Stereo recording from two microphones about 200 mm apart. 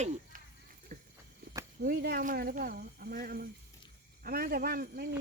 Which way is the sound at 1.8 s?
50° right (ahead or behind).